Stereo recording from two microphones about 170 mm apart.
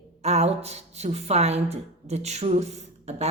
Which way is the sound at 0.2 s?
40° right (ahead or behind).